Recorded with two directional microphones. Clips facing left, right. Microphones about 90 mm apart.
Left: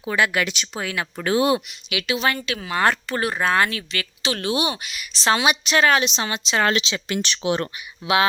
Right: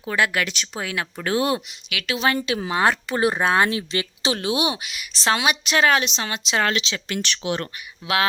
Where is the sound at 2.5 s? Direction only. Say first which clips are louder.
Right 4 dB; 25° right (ahead or behind).